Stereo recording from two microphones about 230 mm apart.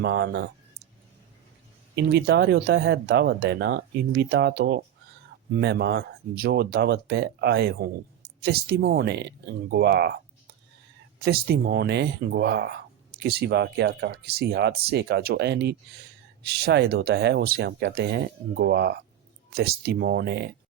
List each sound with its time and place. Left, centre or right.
0.0 s speech: right
2.0 s speech: right
11.2 s speech: right